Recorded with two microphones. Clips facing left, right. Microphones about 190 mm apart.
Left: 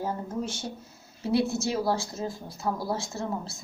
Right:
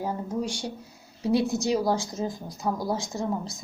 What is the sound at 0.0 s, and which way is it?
A woman's voice, 15° right (ahead or behind).